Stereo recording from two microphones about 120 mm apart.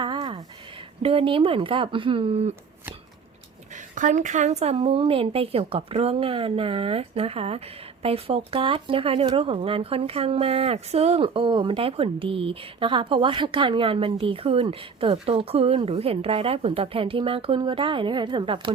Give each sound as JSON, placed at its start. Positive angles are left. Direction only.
{"t": 1.0, "sound": "speech", "side_deg": -50}
{"t": 3.9, "sound": "a woman's voice", "side_deg": -90}